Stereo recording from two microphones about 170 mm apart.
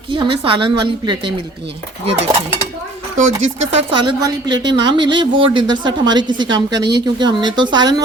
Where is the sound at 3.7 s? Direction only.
30° right (ahead or behind).